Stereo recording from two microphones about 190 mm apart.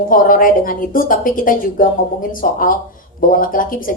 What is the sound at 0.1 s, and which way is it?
A woman's voice, 45° left (ahead or behind).